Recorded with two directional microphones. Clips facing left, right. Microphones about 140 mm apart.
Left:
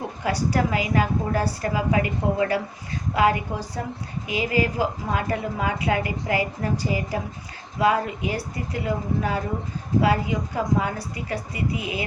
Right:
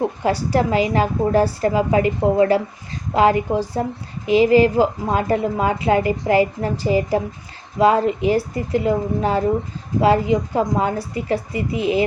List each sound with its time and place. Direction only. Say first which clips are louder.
0.3 s a woman's voice: right 3 dB; 30° right (ahead or behind)